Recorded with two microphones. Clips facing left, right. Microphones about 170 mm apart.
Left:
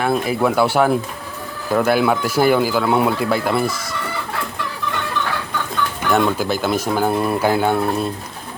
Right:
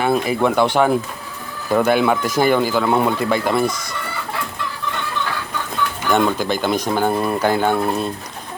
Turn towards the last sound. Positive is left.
turn(degrees=5)  # may be behind; listen again after turning